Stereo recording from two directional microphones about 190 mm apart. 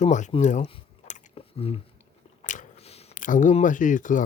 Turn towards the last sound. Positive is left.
turn(degrees=45)  # may be behind; listen again after turning